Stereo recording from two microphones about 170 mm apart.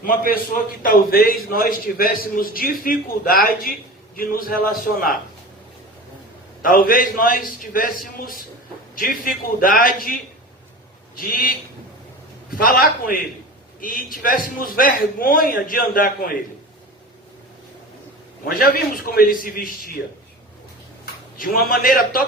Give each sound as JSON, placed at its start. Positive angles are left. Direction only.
{"t": 0.0, "sound": "a man's voice", "side_deg": 55}
{"t": 6.6, "sound": "a man's voice", "side_deg": 55}
{"t": 11.2, "sound": "a man's voice", "side_deg": 55}
{"t": 18.4, "sound": "a man's voice", "side_deg": 60}
{"t": 21.0, "sound": "a man's voice", "side_deg": 55}